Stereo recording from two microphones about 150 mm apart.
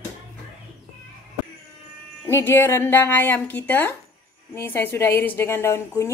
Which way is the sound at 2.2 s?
15° left (ahead or behind).